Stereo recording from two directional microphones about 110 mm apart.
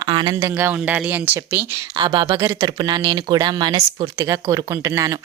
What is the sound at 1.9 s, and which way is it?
Speech, 45° right (ahead or behind).